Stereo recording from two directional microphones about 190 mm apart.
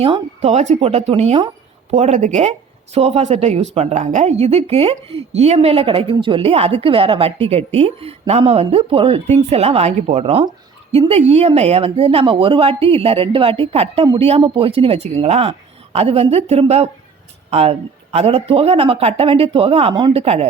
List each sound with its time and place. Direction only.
0.0 s a woman's voice: 30° right (ahead or behind)